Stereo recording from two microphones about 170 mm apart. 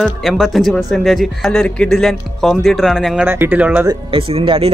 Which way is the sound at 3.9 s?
30° right (ahead or behind).